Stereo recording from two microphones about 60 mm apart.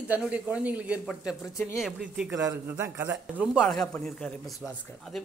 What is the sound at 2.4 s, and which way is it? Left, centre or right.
Speech, right.